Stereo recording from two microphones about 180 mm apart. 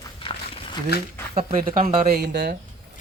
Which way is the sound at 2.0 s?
60° right (ahead or behind).